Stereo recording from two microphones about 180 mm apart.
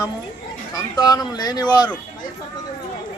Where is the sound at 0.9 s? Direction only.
20° left (ahead or behind).